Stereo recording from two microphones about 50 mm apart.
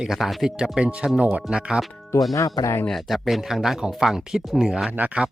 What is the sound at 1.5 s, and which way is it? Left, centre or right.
Speech, centre.